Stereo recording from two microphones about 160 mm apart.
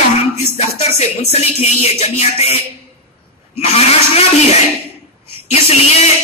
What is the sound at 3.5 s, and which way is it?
Music, 40° left (ahead or behind).